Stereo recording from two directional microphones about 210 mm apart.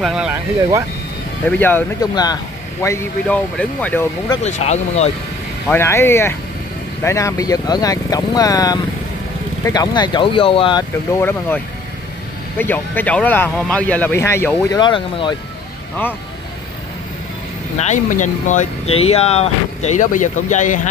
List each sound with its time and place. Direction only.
0.0 s speech: 5° right (ahead or behind)
1.4 s speech: 10° left (ahead or behind)
4.4 s speech: 35° left (ahead or behind)
5.7 s speech: 10° left (ahead or behind)
11.1 s speech: 10° left (ahead or behind)
17.7 s speech: 35° left (ahead or behind)